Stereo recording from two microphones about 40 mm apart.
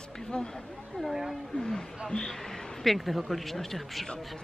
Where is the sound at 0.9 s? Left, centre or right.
Centre.